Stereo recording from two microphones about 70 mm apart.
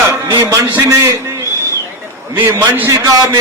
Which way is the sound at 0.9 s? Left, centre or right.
Right.